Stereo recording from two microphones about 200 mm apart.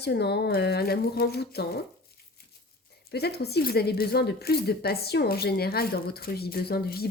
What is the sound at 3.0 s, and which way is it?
A woman's voice, 55° left (ahead or behind).